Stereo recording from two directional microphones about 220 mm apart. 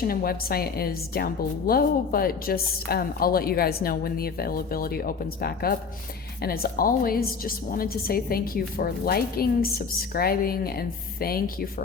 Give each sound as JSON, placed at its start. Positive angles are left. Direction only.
{"t": 0.1, "sound": "a woman's voice", "side_deg": 40}